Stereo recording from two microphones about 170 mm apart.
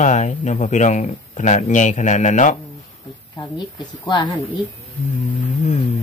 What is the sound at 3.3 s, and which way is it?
Speech, 25° left (ahead or behind).